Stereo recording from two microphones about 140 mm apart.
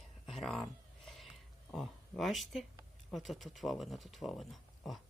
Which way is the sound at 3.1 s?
Centre (ahead or behind).